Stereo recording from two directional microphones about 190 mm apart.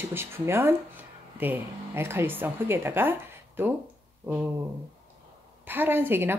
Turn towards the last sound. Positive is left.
turn(degrees=-10)  # may be behind; listen again after turning